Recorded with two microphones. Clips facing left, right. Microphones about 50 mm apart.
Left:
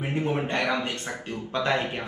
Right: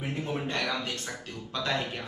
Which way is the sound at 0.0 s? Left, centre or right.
Left.